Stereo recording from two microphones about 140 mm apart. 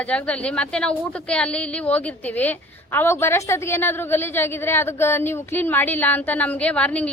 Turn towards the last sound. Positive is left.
turn(degrees=10)  # may be behind; listen again after turning